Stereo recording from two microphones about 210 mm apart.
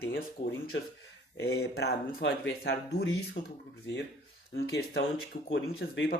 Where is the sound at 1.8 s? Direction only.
55° left (ahead or behind).